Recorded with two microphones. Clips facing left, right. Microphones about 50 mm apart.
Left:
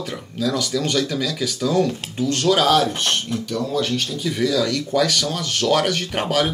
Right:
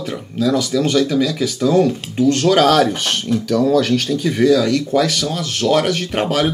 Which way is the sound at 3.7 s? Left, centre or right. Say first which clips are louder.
Right 7 dB; right.